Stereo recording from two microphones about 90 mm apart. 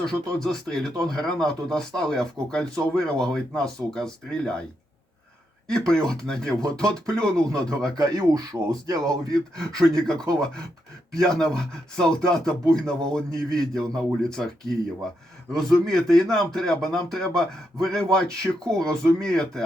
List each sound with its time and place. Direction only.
0.0 s speech: 5° left (ahead or behind)
5.6 s speech: 5° left (ahead or behind)
7.9 s speech: 40° right (ahead or behind)
9.3 s speech: 5° left (ahead or behind)